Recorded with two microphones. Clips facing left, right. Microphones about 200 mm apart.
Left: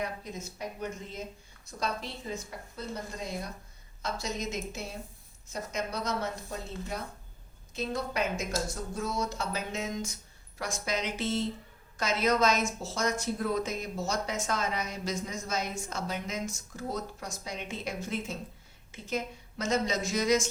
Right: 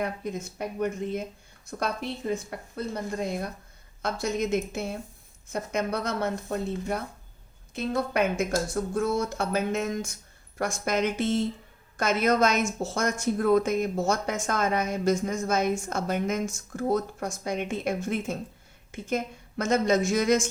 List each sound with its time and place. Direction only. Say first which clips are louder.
0.0 s a woman's voice: right 6 dB; 55° right (ahead or behind)